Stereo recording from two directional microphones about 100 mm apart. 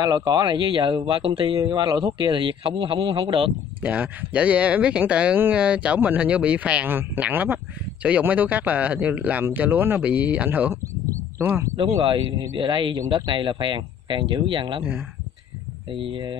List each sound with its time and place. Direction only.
0.0 s speech: 45° right (ahead or behind); by 1.6 s 65° right (ahead or behind)
2.0 s speech: 50° right (ahead or behind)
3.8 s speech: 15° right (ahead or behind)
11.7 s speech: 60° right (ahead or behind)
14.8 s speech: 10° right (ahead or behind)
15.9 s speech: 60° right (ahead or behind)